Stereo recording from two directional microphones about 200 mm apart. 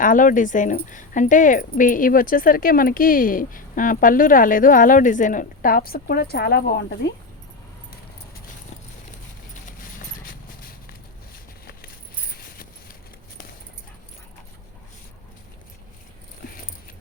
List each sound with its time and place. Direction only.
0.0 s speech: 40° left (ahead or behind)
9.6 s horse: 40° left (ahead or behind)
12.3 s a sound: 50° left (ahead or behind)